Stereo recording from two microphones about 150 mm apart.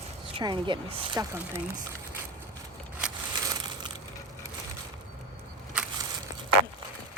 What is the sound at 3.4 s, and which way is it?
Crushing, 25° right (ahead or behind).